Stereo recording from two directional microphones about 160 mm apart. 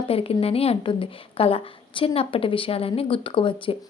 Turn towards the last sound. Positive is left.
turn(degrees=35)  # may be behind; listen again after turning